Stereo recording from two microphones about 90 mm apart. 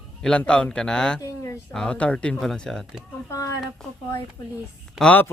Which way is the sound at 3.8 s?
5° left (ahead or behind).